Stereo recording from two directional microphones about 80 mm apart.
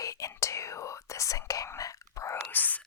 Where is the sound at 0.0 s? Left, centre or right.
Left.